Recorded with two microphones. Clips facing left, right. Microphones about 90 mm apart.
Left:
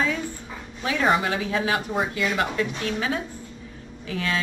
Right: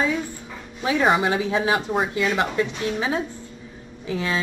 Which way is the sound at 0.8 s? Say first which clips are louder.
Right 3 dB; 15° right (ahead or behind).